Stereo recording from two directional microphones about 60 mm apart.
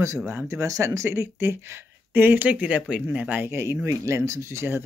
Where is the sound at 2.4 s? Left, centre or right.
Right.